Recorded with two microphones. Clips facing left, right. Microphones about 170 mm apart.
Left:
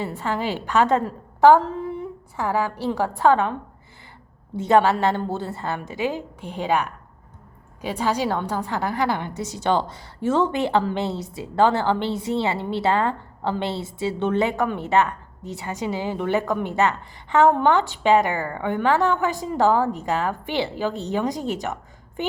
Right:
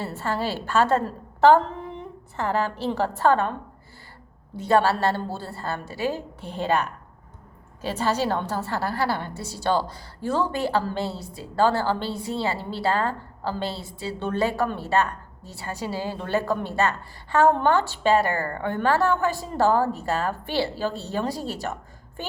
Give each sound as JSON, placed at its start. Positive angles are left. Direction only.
{"t": 0.0, "sound": "a woman's voice", "side_deg": 15}
{"t": 4.5, "sound": "a woman's voice", "side_deg": 20}